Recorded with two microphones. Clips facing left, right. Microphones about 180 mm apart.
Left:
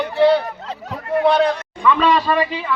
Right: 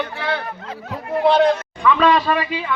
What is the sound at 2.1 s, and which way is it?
Speech, 5° right (ahead or behind).